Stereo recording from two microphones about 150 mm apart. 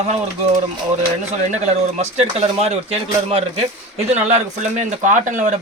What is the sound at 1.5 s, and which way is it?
Speech, 45° right (ahead or behind).